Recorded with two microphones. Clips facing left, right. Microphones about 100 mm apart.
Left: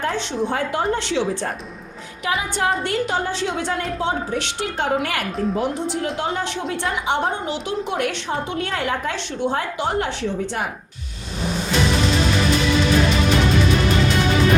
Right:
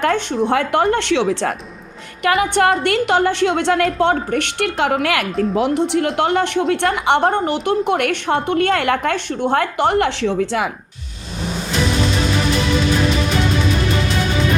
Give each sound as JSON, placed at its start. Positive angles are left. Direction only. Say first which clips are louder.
{"t": 0.0, "sound": "a woman's voice", "louder": "right 5 dB", "side_deg": -75}
{"t": 2.2, "sound": "a woman's voice", "louder": "right 7 dB", "side_deg": -70}
{"t": 4.0, "sound": "a woman's voice", "louder": "right 6 dB", "side_deg": -60}